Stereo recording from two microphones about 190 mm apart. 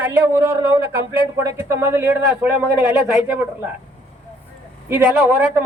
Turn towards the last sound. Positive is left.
turn(degrees=-10)  # may be behind; listen again after turning